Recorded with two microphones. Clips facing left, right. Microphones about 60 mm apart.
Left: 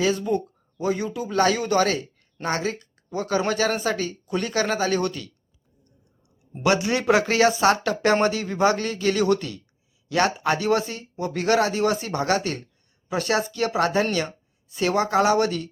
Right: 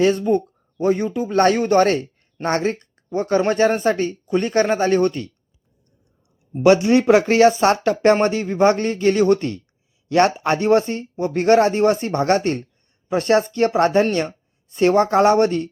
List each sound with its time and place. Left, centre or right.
0.0 s speech: right
6.6 s speech: right